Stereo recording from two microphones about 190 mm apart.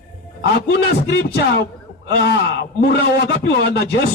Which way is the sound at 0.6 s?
60° left (ahead or behind).